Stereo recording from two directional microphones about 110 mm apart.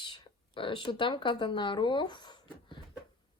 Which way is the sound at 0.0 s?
50° left (ahead or behind).